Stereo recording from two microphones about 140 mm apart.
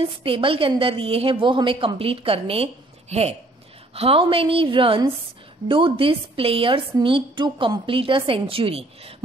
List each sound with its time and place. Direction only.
0.0 s a woman's voice: 40° right (ahead or behind)